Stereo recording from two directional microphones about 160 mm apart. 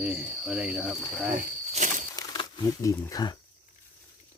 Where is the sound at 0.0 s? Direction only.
5° right (ahead or behind).